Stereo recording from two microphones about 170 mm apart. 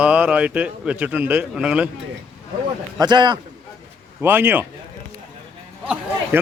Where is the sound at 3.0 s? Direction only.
25° right (ahead or behind).